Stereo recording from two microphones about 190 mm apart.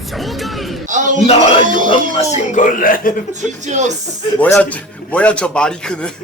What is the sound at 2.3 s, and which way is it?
Speech, 40° left (ahead or behind).